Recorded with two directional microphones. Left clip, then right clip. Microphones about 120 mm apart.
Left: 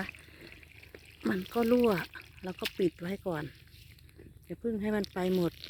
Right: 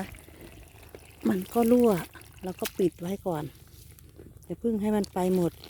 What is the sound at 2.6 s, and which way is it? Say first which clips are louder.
Speech: right 4 dB; 30° right (ahead or behind).